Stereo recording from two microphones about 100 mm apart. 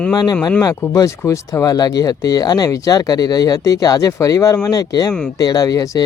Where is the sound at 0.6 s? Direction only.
35° left (ahead or behind).